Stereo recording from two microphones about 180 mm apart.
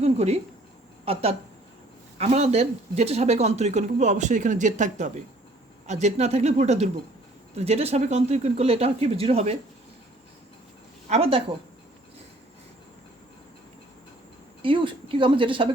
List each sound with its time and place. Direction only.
0.0 s a sound: 35° right (ahead or behind)
1.0 s speech: 35° right (ahead or behind)
11.1 s speech: 30° right (ahead or behind)
14.6 s a woman's voice: 30° right (ahead or behind)